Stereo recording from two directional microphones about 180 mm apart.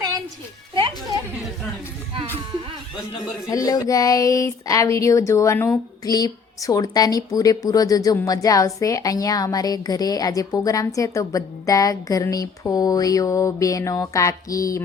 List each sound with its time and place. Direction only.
3.5 s speech: 20° left (ahead or behind)